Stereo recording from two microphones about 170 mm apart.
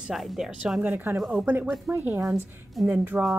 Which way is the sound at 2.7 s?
Centre (ahead or behind).